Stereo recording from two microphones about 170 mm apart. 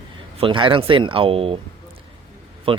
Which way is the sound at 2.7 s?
30° right (ahead or behind).